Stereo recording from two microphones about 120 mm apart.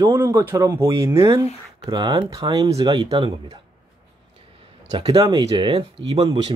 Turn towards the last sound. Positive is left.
turn(degrees=-35)  # may be behind; listen again after turning